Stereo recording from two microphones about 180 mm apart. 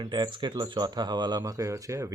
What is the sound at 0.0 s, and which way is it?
Speech, 25° right (ahead or behind).